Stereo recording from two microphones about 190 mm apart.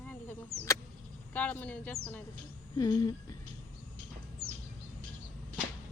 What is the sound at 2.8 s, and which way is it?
Speech, 20° left (ahead or behind).